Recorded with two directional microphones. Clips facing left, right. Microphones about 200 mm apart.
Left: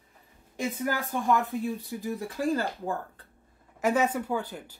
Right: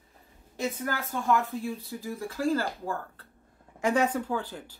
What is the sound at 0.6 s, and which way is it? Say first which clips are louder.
Speech: left 2 dB; 10° left (ahead or behind).